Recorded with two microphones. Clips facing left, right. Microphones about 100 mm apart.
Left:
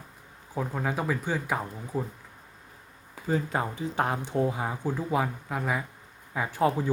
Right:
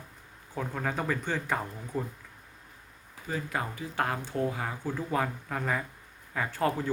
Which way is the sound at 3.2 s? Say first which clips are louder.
Left 5 dB; 30° left (ahead or behind).